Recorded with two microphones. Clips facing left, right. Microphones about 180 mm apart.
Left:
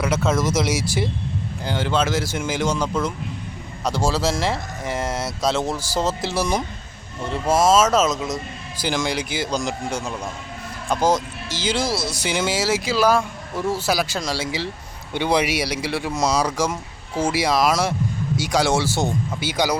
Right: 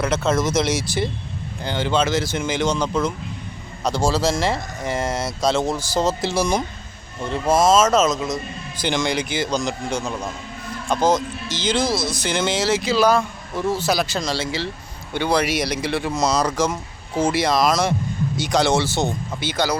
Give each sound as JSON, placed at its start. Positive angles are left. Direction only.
{"t": 0.0, "sound": "speech", "side_deg": 10}